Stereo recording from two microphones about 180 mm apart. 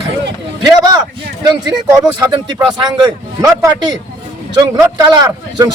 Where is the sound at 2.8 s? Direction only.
20° right (ahead or behind).